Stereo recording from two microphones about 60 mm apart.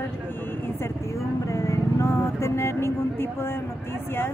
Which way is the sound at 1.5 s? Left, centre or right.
Left.